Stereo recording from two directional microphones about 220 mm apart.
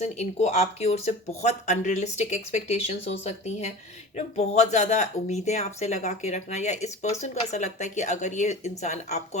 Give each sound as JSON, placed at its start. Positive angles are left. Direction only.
{"t": 0.0, "sound": "speech", "side_deg": 30}